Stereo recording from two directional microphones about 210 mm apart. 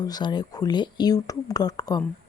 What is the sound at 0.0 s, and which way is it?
Speech, 20° left (ahead or behind).